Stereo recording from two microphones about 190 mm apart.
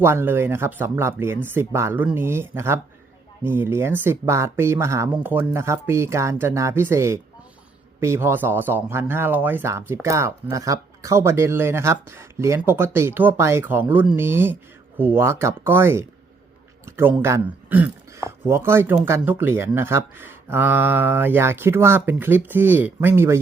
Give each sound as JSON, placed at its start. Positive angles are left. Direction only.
{"t": 0.0, "sound": "speech", "side_deg": -15}